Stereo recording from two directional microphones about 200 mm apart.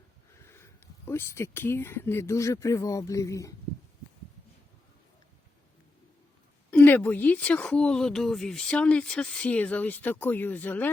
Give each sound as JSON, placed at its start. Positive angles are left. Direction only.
{"t": 0.4, "sound": "speech", "side_deg": 15}
{"t": 6.7, "sound": "speech", "side_deg": 10}